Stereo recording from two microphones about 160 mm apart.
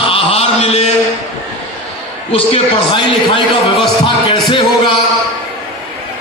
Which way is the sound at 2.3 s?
35° left (ahead or behind).